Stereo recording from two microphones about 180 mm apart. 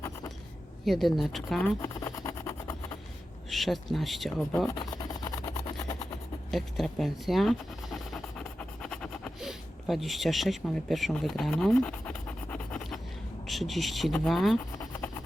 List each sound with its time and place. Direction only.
0.9 s speech: centre (ahead or behind)
2.0 s a sound: 15° left (ahead or behind)
3.5 s speech: centre (ahead or behind)
4.7 s rub: 20° left (ahead or behind)
6.5 s a sound: centre (ahead or behind)
13.5 s speech: centre (ahead or behind)